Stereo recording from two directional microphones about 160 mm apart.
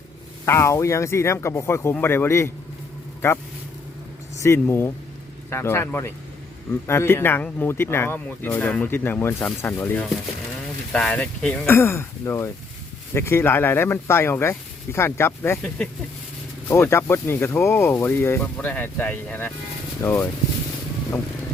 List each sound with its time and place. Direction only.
0.4 s speech: 15° left (ahead or behind)
4.4 s speech: 15° left (ahead or behind)